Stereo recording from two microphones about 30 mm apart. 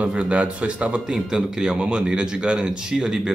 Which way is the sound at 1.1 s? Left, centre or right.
Right.